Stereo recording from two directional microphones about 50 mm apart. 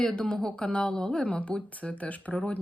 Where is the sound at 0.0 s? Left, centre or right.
Centre.